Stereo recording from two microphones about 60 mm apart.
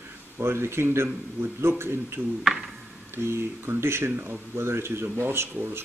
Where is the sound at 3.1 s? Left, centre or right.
Right.